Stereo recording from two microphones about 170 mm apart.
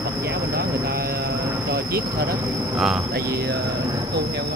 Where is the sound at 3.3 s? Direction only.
70° right (ahead or behind).